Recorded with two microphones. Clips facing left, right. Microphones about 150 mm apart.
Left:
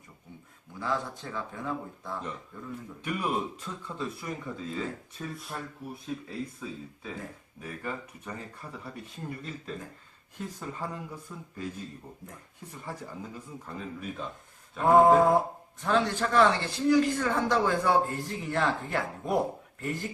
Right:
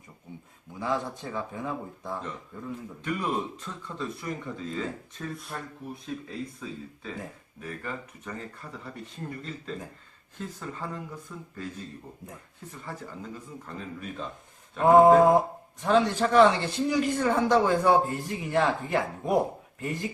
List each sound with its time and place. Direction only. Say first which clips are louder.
0.8 s speech: right 2 dB; 20° right (ahead or behind)
3.0 s speech: right 1 dB; 10° left (ahead or behind)
14.8 s speech: right 3 dB; 15° right (ahead or behind)